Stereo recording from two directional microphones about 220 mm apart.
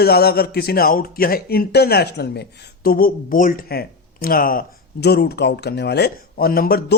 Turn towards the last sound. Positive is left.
turn(degrees=45)  # may be behind; listen again after turning